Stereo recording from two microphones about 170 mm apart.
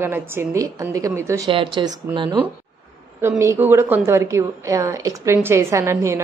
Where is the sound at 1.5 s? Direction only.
30° right (ahead or behind).